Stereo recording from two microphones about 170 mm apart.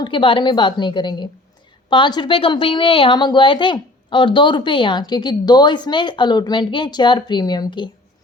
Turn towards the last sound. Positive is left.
turn(degrees=25)  # may be behind; listen again after turning